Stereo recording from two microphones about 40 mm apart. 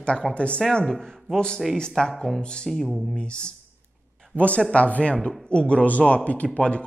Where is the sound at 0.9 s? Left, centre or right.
Centre.